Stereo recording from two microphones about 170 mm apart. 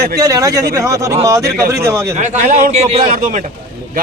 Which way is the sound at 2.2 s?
45° right (ahead or behind).